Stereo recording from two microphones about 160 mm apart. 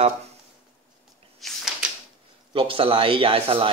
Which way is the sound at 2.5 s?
35° right (ahead or behind).